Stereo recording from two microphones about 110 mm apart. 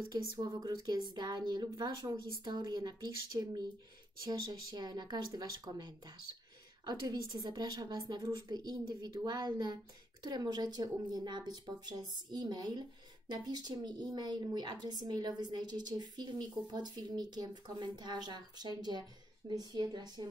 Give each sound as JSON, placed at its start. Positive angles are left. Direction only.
{"t": 0.1, "sound": "a woman's voice", "side_deg": -35}